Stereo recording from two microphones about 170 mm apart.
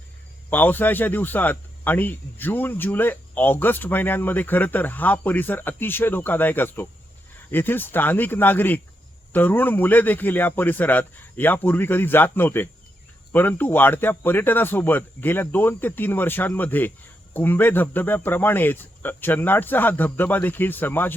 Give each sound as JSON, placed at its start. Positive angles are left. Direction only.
{"t": 0.5, "sound": "speech", "side_deg": 10}